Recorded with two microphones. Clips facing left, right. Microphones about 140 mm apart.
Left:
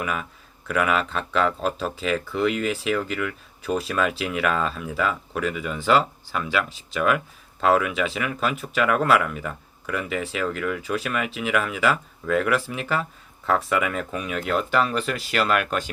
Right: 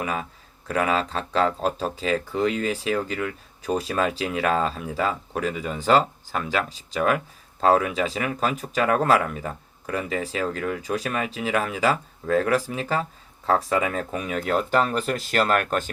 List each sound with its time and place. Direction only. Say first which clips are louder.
0.0 s speech: even; 30° right (ahead or behind)